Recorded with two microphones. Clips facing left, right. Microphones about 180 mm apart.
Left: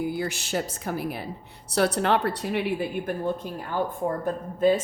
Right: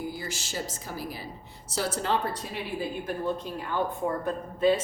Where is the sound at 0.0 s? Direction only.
60° left (ahead or behind).